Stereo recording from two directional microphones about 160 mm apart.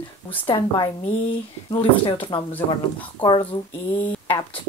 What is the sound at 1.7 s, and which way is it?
Speech, 30° left (ahead or behind).